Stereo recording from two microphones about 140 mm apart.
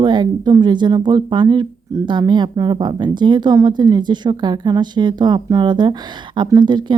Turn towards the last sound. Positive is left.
turn(degrees=-35)  # may be behind; listen again after turning